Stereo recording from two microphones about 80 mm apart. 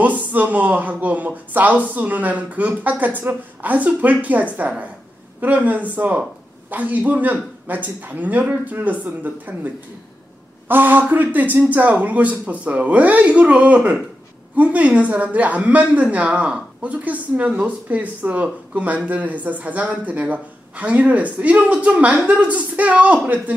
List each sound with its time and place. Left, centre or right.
0.0 s speech: centre
10.7 s a woman's voice: right